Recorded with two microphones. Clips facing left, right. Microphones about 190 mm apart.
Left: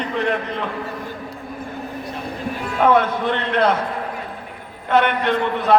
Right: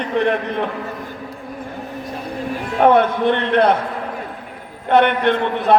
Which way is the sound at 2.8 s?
55° right (ahead or behind).